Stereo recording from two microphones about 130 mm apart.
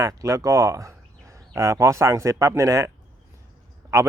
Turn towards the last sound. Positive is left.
turn(degrees=-25)  # may be behind; listen again after turning